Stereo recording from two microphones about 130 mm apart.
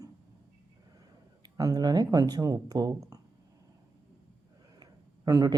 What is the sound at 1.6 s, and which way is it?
Speech, 30° right (ahead or behind).